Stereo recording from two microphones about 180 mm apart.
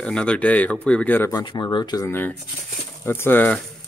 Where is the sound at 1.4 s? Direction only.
25° left (ahead or behind); by 3.6 s 10° left (ahead or behind).